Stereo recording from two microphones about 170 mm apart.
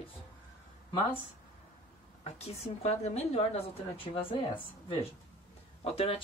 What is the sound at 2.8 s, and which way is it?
Speech, 40° left (ahead or behind).